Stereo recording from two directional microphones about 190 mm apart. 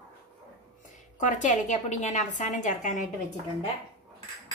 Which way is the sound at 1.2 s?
40° left (ahead or behind).